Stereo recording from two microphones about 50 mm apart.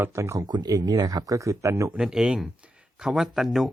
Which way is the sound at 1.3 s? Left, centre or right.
Right.